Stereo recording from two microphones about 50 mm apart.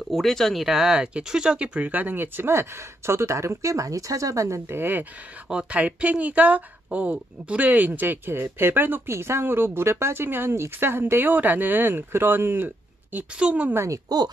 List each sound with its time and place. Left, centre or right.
0.1 s speech: centre
0.7 s speech: centre
1.9 s speech: right
4.6 s a woman's voice: right
5.5 s a woman's voice: right
9.1 s a woman's voice: right
11.2 s speech: right
13.4 s speech: right